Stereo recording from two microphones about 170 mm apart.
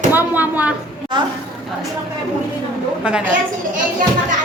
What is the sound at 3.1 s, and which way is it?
Speech, 5° right (ahead or behind).